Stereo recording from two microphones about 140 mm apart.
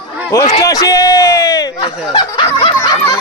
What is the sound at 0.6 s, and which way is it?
Speech, 25° left (ahead or behind).